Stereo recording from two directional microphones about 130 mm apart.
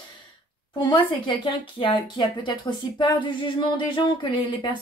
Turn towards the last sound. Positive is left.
turn(degrees=40)  # may be behind; listen again after turning